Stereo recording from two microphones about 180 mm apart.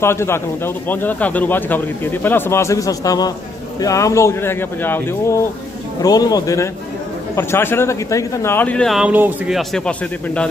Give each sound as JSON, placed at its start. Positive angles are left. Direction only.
{"t": 0.0, "sound": "speech", "side_deg": 15}
{"t": 9.6, "sound": "speech", "side_deg": 5}